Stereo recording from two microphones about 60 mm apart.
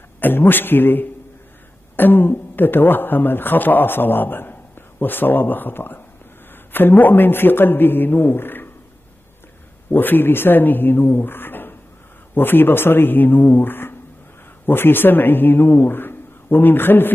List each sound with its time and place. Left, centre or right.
0.2 s a man's voice: left
9.8 s a man's voice: left